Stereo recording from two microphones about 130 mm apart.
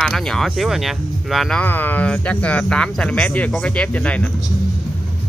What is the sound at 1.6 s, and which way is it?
Speech, 15° left (ahead or behind).